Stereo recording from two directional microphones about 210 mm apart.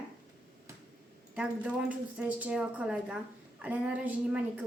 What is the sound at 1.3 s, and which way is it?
A woman's voice, 5° right (ahead or behind).